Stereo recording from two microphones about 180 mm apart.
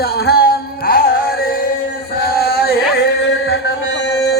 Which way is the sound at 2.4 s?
60° left (ahead or behind).